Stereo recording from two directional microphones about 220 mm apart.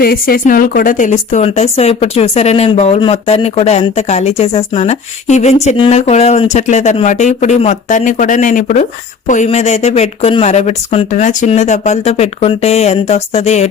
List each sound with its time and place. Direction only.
0.0 s speech: 40° left (ahead or behind)